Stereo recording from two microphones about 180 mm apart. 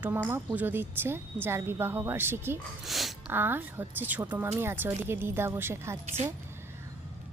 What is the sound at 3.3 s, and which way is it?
A woman's voice, 10° right (ahead or behind).